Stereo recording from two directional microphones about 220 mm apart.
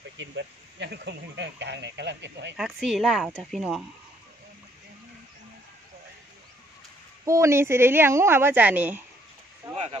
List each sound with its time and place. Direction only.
0.2 s speech: 50° right (ahead or behind)
2.5 s speech: centre (ahead or behind)
7.2 s a woman's voice: 15° right (ahead or behind)